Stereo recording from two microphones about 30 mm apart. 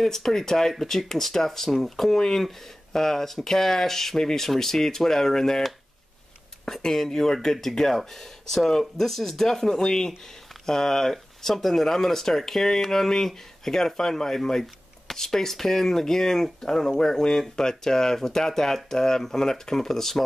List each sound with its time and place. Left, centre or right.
0.0 s speech: centre
6.7 s speech: centre